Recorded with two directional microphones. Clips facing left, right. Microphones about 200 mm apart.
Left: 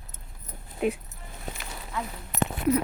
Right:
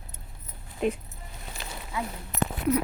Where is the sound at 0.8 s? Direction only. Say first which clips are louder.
Even; 5° left (ahead or behind).